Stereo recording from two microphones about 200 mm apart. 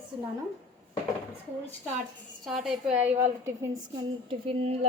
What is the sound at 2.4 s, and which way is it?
A woman's voice, centre (ahead or behind).